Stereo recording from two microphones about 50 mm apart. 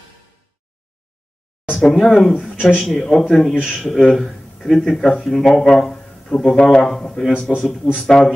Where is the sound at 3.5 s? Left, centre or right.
Centre.